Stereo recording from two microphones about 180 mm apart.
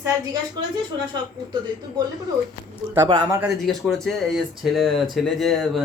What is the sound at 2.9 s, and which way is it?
Speech, 15° right (ahead or behind).